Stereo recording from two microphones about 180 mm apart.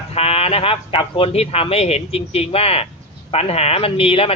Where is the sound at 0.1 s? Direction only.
35° left (ahead or behind).